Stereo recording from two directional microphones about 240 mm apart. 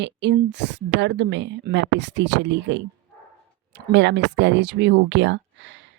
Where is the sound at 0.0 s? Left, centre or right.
Right.